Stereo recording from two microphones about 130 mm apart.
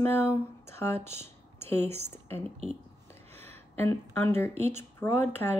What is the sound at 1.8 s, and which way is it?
Speech, 55° right (ahead or behind).